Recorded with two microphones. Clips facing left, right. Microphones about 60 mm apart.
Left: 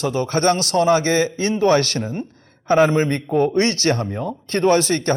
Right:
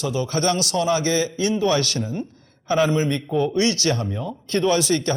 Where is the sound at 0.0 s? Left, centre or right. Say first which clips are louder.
Left 4 dB; left.